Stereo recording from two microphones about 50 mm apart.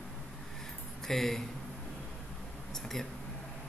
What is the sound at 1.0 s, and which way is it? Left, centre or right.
Speech, centre.